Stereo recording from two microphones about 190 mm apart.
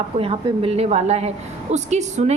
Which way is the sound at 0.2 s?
30° right (ahead or behind).